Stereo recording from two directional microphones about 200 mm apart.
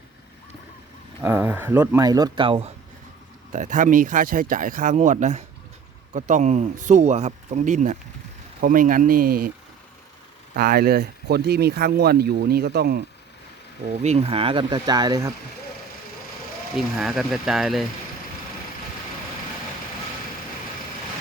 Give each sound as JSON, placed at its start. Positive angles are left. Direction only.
{"t": 1.2, "sound": "speech", "side_deg": -10}
{"t": 3.5, "sound": "speech", "side_deg": -40}
{"t": 10.5, "sound": "speech", "side_deg": -50}
{"t": 13.9, "sound": "speech", "side_deg": -35}
{"t": 16.7, "sound": "speech", "side_deg": -5}